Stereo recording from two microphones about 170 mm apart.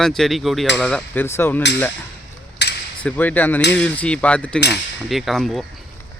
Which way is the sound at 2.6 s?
85° left.